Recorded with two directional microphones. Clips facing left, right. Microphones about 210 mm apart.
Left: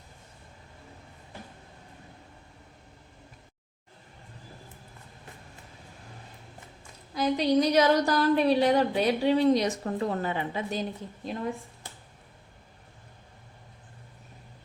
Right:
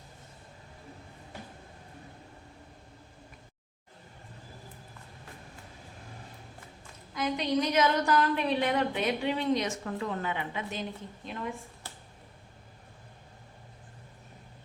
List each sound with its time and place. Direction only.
7.1 s a woman's voice: 35° left (ahead or behind)